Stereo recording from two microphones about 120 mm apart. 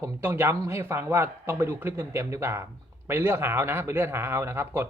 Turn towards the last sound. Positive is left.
turn(degrees=-20)  # may be behind; listen again after turning